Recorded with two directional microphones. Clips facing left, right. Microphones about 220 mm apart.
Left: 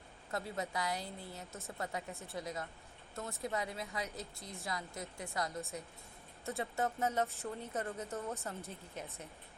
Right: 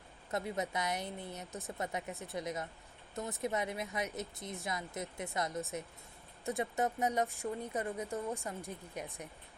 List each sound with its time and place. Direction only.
0.3 s speech: 20° right (ahead or behind)